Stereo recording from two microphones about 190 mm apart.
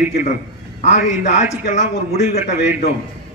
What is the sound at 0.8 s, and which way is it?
A man's voice, 35° left (ahead or behind).